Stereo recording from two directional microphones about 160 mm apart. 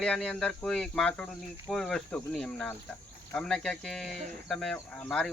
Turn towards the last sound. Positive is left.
turn(degrees=5)  # may be behind; listen again after turning